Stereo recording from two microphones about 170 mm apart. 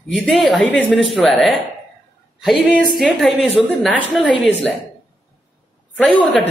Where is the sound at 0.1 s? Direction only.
Centre (ahead or behind).